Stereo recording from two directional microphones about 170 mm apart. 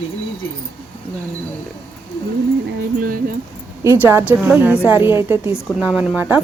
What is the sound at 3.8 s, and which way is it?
A woman's voice, 15° right (ahead or behind).